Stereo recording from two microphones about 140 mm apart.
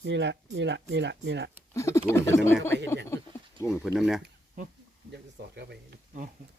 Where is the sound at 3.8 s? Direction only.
5° right (ahead or behind).